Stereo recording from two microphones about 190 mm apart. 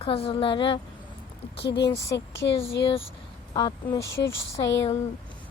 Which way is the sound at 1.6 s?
65° left (ahead or behind).